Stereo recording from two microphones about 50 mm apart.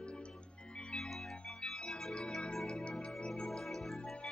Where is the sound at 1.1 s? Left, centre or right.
Centre.